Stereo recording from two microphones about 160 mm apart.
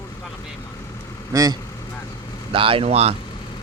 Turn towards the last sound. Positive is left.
turn(degrees=-40)  # may be behind; listen again after turning